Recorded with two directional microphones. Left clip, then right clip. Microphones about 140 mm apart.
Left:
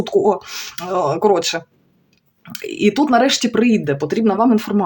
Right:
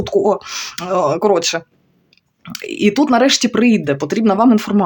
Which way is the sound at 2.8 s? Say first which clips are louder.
Right 1 dB; 30° right (ahead or behind).